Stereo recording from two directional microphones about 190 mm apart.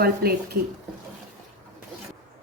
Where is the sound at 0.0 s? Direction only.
55° right (ahead or behind).